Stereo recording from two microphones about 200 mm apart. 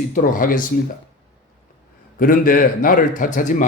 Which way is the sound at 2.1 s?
45° left (ahead or behind).